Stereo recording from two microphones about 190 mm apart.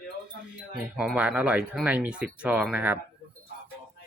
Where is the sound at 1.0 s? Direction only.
5° right (ahead or behind).